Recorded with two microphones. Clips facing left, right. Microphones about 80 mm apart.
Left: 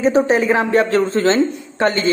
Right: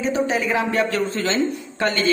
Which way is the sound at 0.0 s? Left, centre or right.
Left.